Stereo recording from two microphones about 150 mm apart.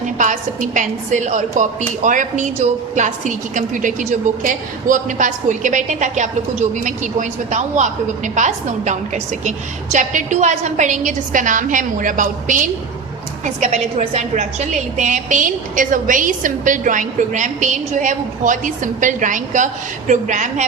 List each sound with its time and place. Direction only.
0.2 s a woman's voice: 55° right (ahead or behind)